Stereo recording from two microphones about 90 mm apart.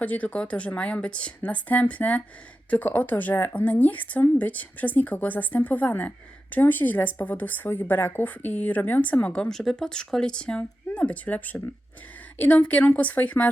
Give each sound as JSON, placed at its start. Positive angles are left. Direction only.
{"t": 0.0, "sound": "speech", "side_deg": 15}